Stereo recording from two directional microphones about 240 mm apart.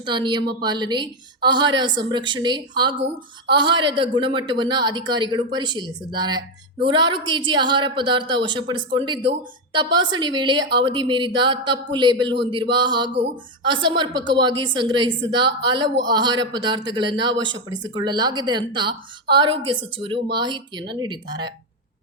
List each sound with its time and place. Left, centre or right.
0.0 s a woman's voice: centre
3.0 s a woman's voice: right
3.6 s a woman's voice: centre